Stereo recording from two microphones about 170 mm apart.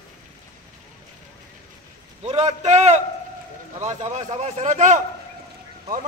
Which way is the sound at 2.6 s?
45° right (ahead or behind).